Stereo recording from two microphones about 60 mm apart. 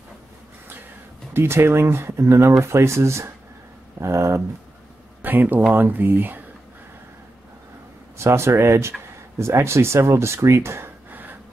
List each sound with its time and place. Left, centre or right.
1.3 s speech: right
5.2 s speech: right
8.2 s speech: right
11.1 s a sound: right